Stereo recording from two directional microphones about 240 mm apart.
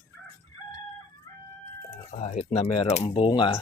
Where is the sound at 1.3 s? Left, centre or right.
Centre.